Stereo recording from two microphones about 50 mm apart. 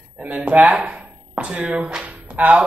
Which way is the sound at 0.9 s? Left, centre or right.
Right.